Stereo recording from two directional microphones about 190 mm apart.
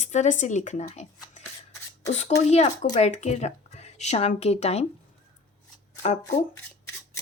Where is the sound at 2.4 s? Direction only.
35° left (ahead or behind).